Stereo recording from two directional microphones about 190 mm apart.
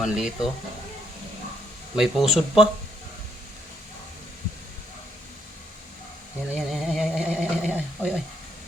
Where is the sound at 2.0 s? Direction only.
Centre (ahead or behind).